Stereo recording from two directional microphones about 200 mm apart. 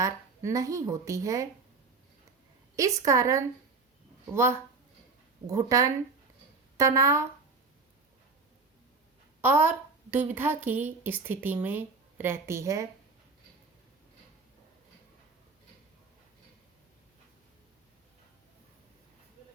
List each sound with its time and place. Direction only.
0.0 s a woman's voice: 15° right (ahead or behind)
2.7 s a woman's voice: 15° right (ahead or behind)
9.4 s a woman's voice: 10° right (ahead or behind)